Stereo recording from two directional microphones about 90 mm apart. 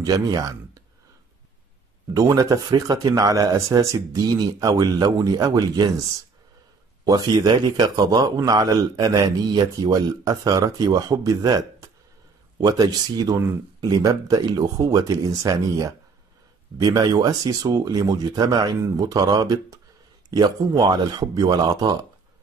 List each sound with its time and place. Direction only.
0.0 s speech: 45° right (ahead or behind)
2.1 s speech: 40° right (ahead or behind)
2.7 s a man's voice: 50° right (ahead or behind)
7.1 s a man's voice: 50° right (ahead or behind)